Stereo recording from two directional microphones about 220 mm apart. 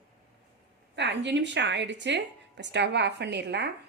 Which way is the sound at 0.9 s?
55° right (ahead or behind).